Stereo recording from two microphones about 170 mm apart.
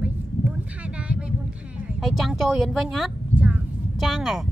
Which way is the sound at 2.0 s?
Centre (ahead or behind).